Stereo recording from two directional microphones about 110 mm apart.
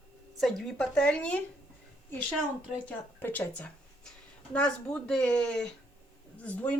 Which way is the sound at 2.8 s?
15° left (ahead or behind).